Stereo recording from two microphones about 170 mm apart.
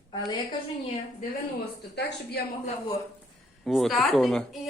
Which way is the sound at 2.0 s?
75° left (ahead or behind).